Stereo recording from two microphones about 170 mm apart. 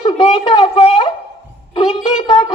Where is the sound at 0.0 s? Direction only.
35° left (ahead or behind).